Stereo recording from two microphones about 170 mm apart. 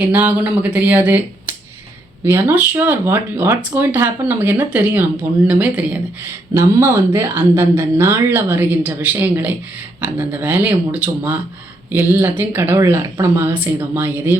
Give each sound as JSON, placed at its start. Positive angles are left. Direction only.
{"t": 0.0, "sound": "speech", "side_deg": -10}